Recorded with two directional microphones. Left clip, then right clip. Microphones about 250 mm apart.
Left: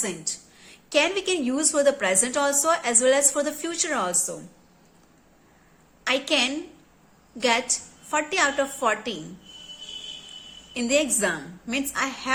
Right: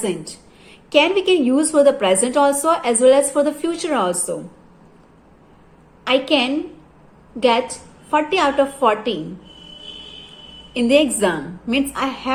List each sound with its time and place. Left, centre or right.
0.0 s a woman's voice: left
6.1 s a woman's voice: left
10.8 s a woman's voice: centre